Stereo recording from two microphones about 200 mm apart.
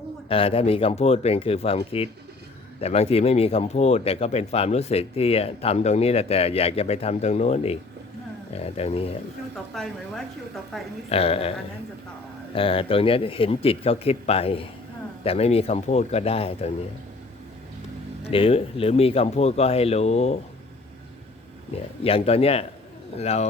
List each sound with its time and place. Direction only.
0.3 s speech: 30° left (ahead or behind)
9.7 s speech: centre (ahead or behind)
11.1 s speech: 30° left (ahead or behind)
12.5 s speech: 25° left (ahead or behind)
18.3 s speech: 25° left (ahead or behind)
22.0 s speech: 30° left (ahead or behind)